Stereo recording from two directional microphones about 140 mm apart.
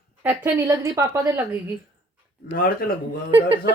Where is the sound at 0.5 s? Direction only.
20° right (ahead or behind).